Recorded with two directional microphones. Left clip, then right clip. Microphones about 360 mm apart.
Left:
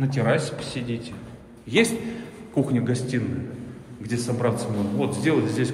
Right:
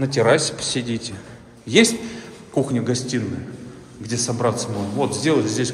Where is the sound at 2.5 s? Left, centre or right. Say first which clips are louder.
Right 3 dB; centre.